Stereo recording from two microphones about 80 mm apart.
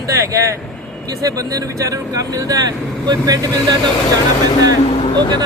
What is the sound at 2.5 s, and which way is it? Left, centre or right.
Speech, right.